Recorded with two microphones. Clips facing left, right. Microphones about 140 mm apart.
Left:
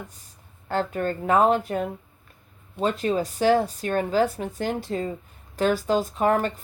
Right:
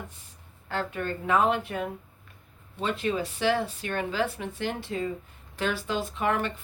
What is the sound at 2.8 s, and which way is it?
Speech, 40° left (ahead or behind).